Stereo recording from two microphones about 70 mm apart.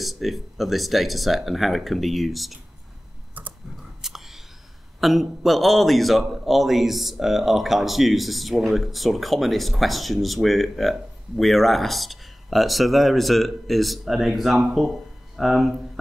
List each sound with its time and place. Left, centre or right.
0.0 s a man's voice: centre
3.4 s typing: right
4.0 s whispering: centre
5.0 s a man's voice: centre